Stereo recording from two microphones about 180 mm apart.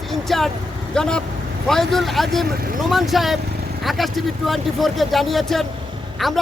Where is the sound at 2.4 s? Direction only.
55° right (ahead or behind).